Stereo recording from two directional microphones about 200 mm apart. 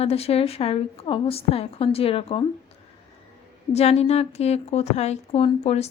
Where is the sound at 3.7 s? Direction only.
30° left (ahead or behind).